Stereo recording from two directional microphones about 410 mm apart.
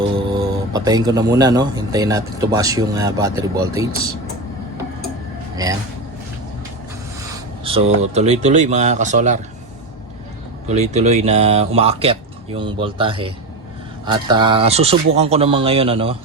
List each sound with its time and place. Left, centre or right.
0.3 s speech: centre
5.6 s speech: centre
7.3 s speech: centre
10.7 s speech: centre